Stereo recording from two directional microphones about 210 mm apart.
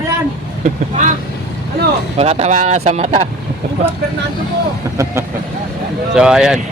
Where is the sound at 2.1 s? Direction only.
30° right (ahead or behind).